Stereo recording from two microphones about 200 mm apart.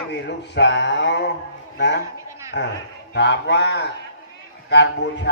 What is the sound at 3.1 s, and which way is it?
Speech, 60° left (ahead or behind).